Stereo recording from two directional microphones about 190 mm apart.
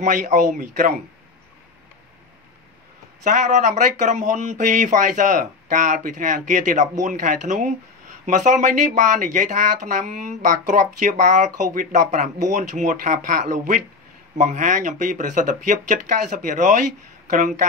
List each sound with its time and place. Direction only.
0.0 s a man's voice: 40° right (ahead or behind)
3.3 s speech: 40° right (ahead or behind)